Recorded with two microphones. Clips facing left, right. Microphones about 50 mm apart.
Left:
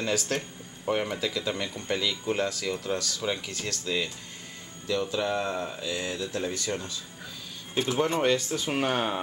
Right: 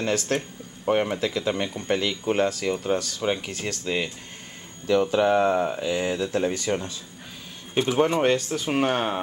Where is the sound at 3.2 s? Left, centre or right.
Right.